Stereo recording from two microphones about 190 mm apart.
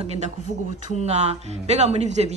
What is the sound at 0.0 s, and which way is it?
Speech, 35° right (ahead or behind).